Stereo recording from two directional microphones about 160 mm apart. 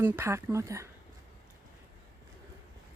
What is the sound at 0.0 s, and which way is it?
Speech, 15° right (ahead or behind).